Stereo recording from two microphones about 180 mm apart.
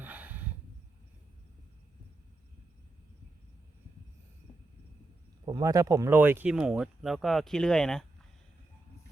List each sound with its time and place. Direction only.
0.0 s snort: 10° right (ahead or behind)
5.5 s speech: 20° right (ahead or behind); by 8.0 s 5° left (ahead or behind)